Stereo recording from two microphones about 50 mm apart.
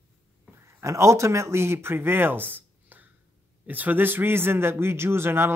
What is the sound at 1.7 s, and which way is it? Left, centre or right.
Speech, right.